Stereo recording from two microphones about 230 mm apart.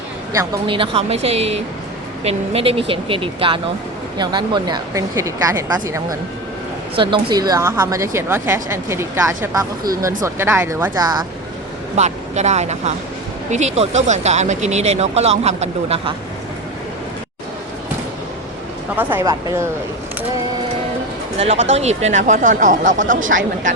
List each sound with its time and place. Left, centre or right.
0.3 s a woman's voice: centre
11.9 s speech: right
18.9 s a woman's voice: centre
21.3 s speech: right